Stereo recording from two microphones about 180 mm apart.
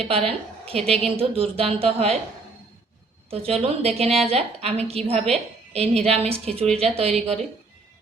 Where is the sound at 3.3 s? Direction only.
35° right (ahead or behind).